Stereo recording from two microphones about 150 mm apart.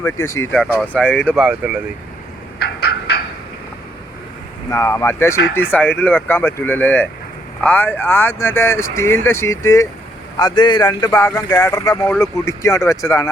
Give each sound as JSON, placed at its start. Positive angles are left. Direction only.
{"t": 0.0, "sound": "speech", "side_deg": 20}
{"t": 0.5, "sound": "speech", "side_deg": 5}
{"t": 1.5, "sound": "speech", "side_deg": -10}
{"t": 4.7, "sound": "speech", "side_deg": 20}